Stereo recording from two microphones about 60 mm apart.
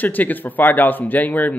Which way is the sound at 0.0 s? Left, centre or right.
Left.